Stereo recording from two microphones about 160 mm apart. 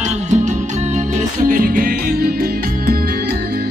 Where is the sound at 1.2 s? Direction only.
60° right (ahead or behind).